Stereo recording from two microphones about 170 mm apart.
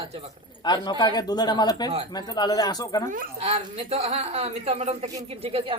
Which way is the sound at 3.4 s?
35° right (ahead or behind).